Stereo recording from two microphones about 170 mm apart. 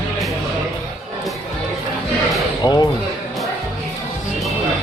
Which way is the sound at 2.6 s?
25° left (ahead or behind).